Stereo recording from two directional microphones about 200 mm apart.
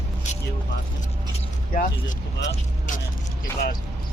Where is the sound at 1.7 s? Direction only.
45° left (ahead or behind).